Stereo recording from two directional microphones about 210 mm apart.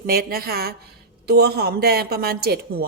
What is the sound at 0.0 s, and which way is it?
A woman's voice, 45° right (ahead or behind).